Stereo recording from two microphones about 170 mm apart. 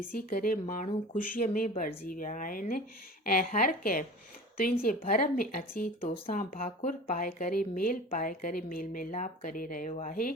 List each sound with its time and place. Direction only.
0.0 s speech: 55° left (ahead or behind)